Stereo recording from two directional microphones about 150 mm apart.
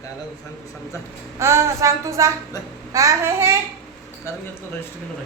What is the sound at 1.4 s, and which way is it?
A woman's voice, 20° right (ahead or behind).